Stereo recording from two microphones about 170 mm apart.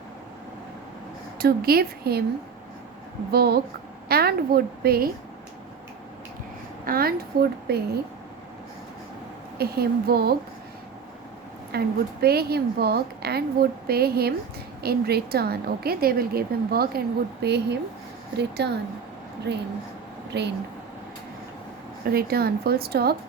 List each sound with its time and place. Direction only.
1.4 s a woman's voice: 65° right (ahead or behind)
3.3 s a woman's voice: 65° right (ahead or behind)
6.8 s a woman's voice: 60° right (ahead or behind)
9.6 s a woman's voice: 65° right (ahead or behind)
11.7 s a woman's voice: 65° right (ahead or behind)
17.4 s a woman's voice: 75° right (ahead or behind)
22.0 s a woman's voice: 60° right (ahead or behind)